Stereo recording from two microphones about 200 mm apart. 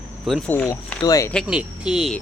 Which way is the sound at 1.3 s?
Centre (ahead or behind).